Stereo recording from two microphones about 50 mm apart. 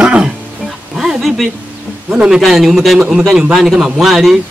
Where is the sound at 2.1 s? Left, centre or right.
Centre.